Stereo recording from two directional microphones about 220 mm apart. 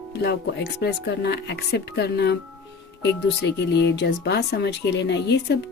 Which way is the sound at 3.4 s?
50° left (ahead or behind).